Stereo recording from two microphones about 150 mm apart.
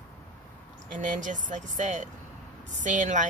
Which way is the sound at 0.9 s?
55° right (ahead or behind).